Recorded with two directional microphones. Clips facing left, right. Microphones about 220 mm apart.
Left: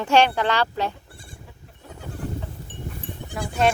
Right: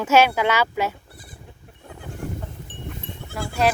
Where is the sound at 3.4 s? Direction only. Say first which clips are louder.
Even; centre (ahead or behind).